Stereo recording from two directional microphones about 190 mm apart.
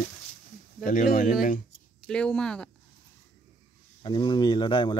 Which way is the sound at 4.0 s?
25° left (ahead or behind).